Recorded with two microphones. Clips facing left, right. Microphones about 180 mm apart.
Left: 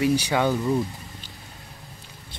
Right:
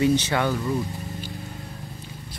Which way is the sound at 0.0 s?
10° left (ahead or behind).